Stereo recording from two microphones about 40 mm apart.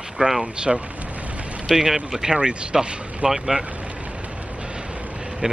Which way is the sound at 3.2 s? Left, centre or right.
Centre.